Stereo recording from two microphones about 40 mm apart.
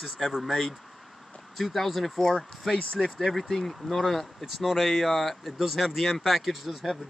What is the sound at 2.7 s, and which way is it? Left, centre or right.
Speech, left.